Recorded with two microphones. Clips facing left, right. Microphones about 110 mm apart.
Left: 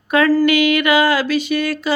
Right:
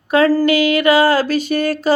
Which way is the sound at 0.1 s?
35° right (ahead or behind).